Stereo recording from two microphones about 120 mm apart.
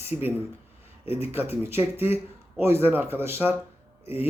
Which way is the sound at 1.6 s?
20° right (ahead or behind).